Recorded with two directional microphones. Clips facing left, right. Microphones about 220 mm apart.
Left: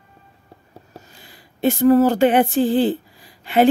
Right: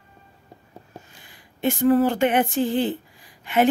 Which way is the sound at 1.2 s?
35° left (ahead or behind).